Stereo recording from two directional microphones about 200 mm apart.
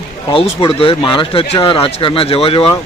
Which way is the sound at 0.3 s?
25° left (ahead or behind).